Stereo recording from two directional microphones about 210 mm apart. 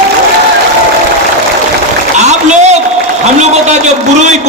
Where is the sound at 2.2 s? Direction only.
35° right (ahead or behind).